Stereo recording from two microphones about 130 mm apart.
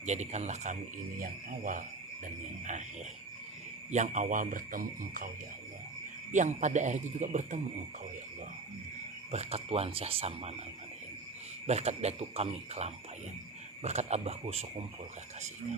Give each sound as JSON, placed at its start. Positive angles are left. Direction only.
{"t": 0.0, "sound": "speech", "side_deg": -60}
{"t": 1.2, "sound": "speech", "side_deg": -90}
{"t": 2.2, "sound": "speech", "side_deg": -70}
{"t": 3.9, "sound": "speech", "side_deg": -70}
{"t": 6.3, "sound": "speech", "side_deg": -70}
{"t": 9.3, "sound": "speech", "side_deg": -55}
{"t": 11.6, "sound": "speech", "side_deg": -55}